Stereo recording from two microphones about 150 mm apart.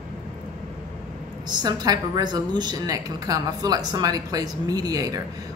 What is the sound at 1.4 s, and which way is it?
Speech, 30° right (ahead or behind).